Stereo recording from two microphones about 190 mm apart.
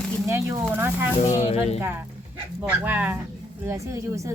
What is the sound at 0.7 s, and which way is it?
Speech, 10° right (ahead or behind).